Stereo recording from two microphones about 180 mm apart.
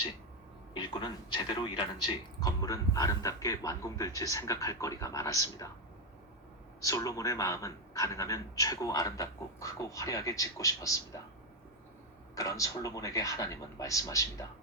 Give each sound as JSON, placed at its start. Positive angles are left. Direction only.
{"t": 0.7, "sound": "a man's voice", "side_deg": 25}
{"t": 6.8, "sound": "a man's voice", "side_deg": 20}
{"t": 12.3, "sound": "a man's voice", "side_deg": 20}